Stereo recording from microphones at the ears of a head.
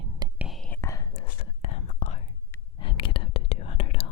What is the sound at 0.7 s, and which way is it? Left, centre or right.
Whispering, left.